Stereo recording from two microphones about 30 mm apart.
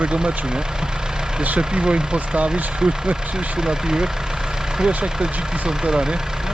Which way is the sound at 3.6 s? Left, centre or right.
Right.